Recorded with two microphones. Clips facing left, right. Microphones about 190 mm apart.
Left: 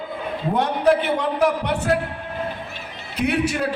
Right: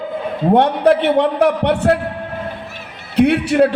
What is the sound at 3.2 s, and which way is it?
Speech, 65° right (ahead or behind).